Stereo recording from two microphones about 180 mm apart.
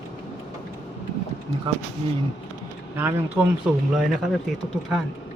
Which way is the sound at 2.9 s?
10° right (ahead or behind).